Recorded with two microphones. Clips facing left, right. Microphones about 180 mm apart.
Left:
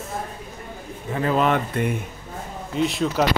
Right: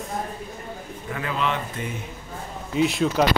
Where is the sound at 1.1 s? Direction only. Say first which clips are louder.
Left 6 dB; 40° left (ahead or behind); by 2.0 s 60° left (ahead or behind).